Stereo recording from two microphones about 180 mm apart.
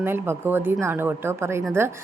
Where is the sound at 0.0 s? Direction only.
10° right (ahead or behind).